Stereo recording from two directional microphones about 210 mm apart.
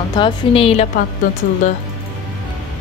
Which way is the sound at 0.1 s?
25° left (ahead or behind).